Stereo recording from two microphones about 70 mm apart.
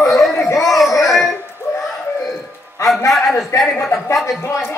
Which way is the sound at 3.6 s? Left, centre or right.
Centre.